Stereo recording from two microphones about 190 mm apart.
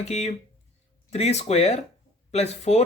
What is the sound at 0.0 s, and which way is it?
Speech, 35° left (ahead or behind).